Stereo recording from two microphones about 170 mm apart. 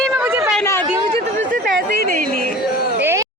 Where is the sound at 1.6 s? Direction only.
65° right (ahead or behind).